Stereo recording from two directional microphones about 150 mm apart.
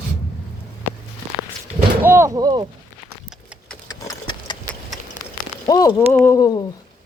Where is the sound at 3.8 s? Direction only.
25° left (ahead or behind).